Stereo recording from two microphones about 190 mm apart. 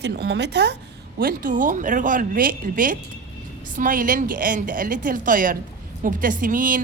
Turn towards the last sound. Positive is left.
turn(degrees=-45)  # may be behind; listen again after turning